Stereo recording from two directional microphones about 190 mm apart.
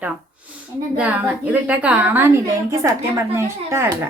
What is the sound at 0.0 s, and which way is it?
Speech, 5° right (ahead or behind).